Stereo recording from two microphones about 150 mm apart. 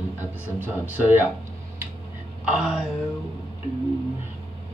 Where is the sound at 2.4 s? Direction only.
5° right (ahead or behind).